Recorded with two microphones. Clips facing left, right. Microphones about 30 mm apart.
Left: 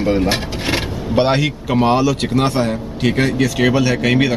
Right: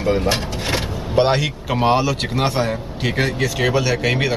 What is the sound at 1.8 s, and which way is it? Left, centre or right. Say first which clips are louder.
Speech: left 2 dB; centre.